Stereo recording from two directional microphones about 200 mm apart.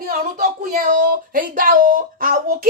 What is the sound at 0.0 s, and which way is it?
Speech, 45° right (ahead or behind).